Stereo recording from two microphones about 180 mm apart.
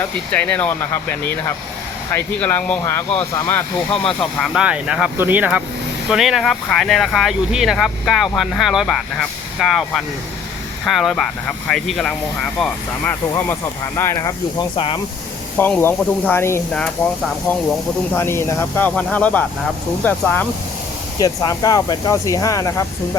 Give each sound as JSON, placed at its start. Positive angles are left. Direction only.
{"t": 0.0, "sound": "speech", "side_deg": 10}
{"t": 13.3, "sound": "speech", "side_deg": 15}
{"t": 14.8, "sound": "speech", "side_deg": 30}
{"t": 15.5, "sound": "speech", "side_deg": 10}
{"t": 18.1, "sound": "speech", "side_deg": 15}
{"t": 21.2, "sound": "speech", "side_deg": 20}